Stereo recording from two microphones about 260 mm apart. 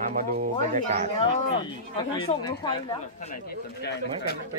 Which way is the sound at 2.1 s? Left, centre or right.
Left.